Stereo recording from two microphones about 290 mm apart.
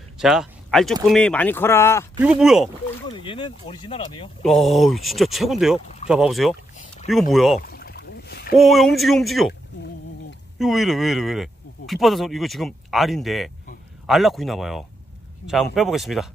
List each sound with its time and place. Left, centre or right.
0.2 s speech: centre
2.4 s speech: centre
3.1 s speech: centre
4.4 s speech: centre
7.6 s boat: left
8.5 s speech: centre
10.6 s speech: centre